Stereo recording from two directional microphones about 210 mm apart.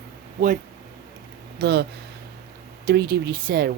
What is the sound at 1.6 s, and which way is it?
Speech, 55° right (ahead or behind).